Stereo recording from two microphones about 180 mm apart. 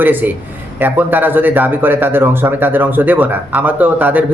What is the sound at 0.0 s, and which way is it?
Speech, 10° right (ahead or behind).